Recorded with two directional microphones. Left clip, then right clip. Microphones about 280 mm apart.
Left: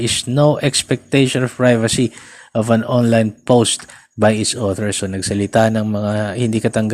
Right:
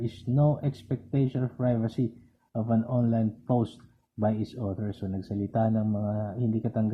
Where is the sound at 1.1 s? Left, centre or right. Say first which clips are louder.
Left 15 dB; left.